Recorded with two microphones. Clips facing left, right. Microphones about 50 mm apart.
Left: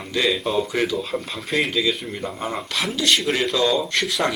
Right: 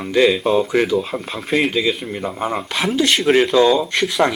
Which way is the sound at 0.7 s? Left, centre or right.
Right.